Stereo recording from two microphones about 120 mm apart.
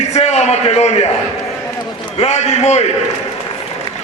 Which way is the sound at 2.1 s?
65° left (ahead or behind).